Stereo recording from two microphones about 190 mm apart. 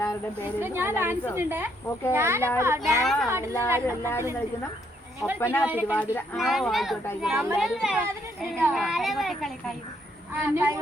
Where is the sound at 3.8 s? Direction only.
15° left (ahead or behind).